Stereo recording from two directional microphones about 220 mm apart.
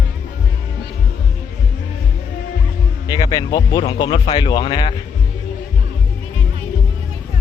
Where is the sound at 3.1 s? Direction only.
20° left (ahead or behind).